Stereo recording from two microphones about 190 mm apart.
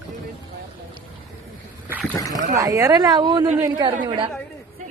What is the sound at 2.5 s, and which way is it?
A woman's voice, 20° right (ahead or behind).